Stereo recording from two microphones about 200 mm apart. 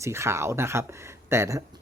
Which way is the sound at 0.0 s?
15° right (ahead or behind).